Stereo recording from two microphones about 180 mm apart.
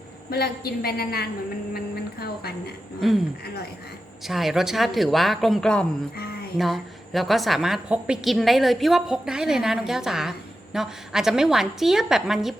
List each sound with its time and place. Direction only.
0.3 s a woman's voice: 60° left (ahead or behind)
4.2 s a woman's voice: centre (ahead or behind)